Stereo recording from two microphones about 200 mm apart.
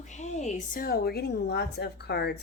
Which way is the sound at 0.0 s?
35° left (ahead or behind).